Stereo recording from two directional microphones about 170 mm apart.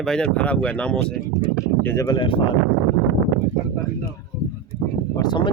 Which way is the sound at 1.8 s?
15° left (ahead or behind).